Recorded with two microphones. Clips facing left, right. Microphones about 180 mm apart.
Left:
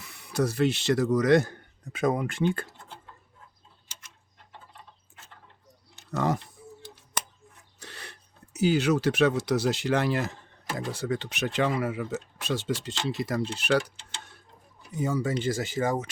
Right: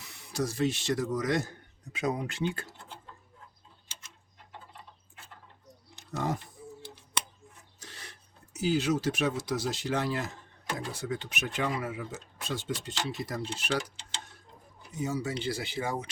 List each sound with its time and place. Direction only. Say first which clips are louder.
0.0 s speech: left 5 dB; 60° left (ahead or behind)
6.1 s speech: left 5 dB; 80° left
7.8 s a sound: left 5 dB; 65° left (ahead or behind)
8.5 s speech: left 4 dB; 70° left (ahead or behind)
15.0 s speech: left 5 dB; 50° left (ahead or behind)